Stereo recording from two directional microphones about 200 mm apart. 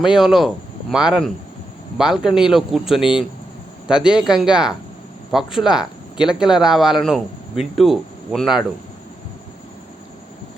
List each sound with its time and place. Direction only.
0.0 s speech: centre (ahead or behind)